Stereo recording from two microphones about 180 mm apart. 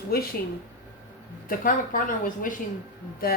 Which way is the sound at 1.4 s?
50° left (ahead or behind).